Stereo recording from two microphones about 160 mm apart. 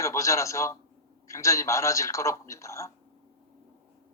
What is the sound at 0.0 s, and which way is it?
A man's voice, 20° left (ahead or behind).